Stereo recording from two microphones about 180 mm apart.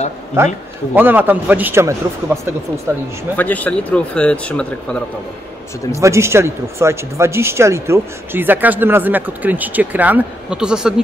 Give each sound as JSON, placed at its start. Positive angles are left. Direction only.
{"t": 0.4, "sound": "speech", "side_deg": -15}
{"t": 3.3, "sound": "speech", "side_deg": 10}
{"t": 5.9, "sound": "speech", "side_deg": -15}